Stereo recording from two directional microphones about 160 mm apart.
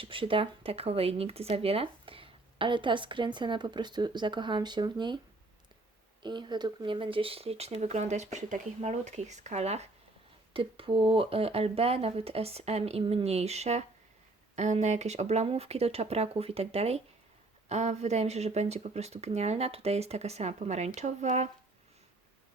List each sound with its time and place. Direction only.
0.0 s speech: 35° right (ahead or behind)
6.2 s speech: 30° right (ahead or behind); by 21.5 s 45° right (ahead or behind)